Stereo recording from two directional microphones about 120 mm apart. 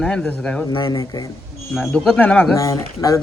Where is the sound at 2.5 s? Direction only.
30° left (ahead or behind).